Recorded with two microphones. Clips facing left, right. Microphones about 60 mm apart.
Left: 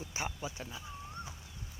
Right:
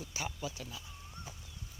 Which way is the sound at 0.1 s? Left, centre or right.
Left.